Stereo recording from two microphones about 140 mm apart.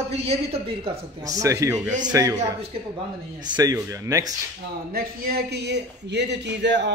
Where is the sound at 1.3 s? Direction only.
25° right (ahead or behind).